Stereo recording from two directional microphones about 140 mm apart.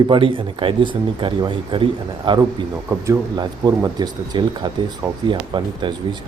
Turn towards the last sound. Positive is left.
turn(degrees=-35)  # may be behind; listen again after turning